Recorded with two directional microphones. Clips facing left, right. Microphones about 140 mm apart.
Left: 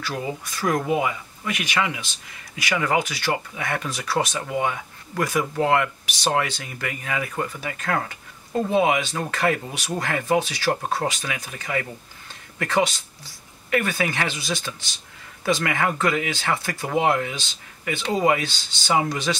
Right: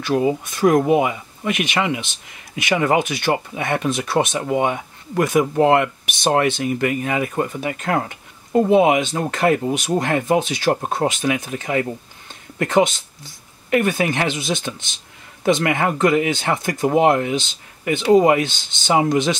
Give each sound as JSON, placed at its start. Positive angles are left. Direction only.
{"t": 0.0, "sound": "speech", "side_deg": -20}